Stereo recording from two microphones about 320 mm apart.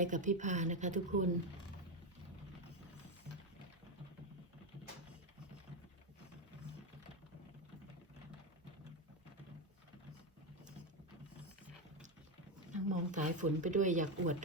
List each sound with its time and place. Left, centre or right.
0.0 s speech: right
12.7 s speech: right